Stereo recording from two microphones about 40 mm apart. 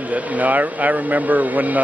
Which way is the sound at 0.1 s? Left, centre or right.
Right.